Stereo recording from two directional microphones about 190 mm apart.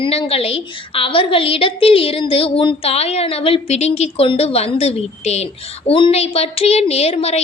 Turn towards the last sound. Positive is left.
turn(degrees=35)  # may be behind; listen again after turning